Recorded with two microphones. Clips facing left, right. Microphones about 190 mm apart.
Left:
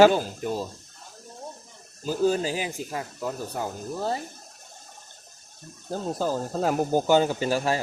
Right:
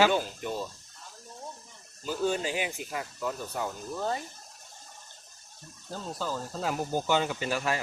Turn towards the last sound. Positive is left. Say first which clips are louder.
# left 6 dB
turn(degrees=35)  # may be behind; listen again after turning